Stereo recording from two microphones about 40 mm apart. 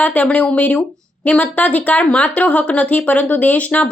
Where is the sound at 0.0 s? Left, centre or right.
Left.